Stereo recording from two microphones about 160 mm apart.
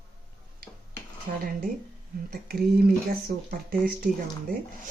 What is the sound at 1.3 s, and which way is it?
Speech, 50° right (ahead or behind).